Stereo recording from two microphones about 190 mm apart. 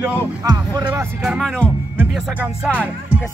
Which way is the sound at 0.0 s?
20° right (ahead or behind).